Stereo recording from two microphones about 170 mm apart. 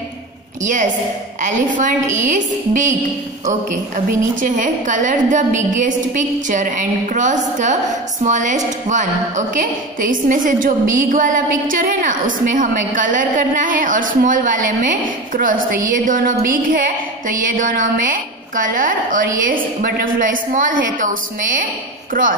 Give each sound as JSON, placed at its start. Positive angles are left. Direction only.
{"t": 1.4, "sound": "a woman's voice", "side_deg": -50}